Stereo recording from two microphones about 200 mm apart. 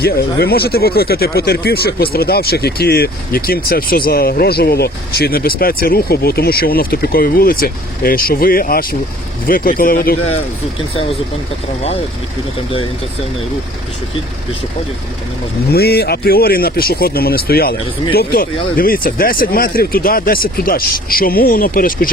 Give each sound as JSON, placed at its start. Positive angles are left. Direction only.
{"t": 0.0, "sound": "speech", "side_deg": 50}
{"t": 15.7, "sound": "speech", "side_deg": 50}